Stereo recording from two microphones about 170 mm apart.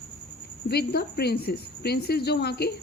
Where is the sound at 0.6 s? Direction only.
70° left (ahead or behind).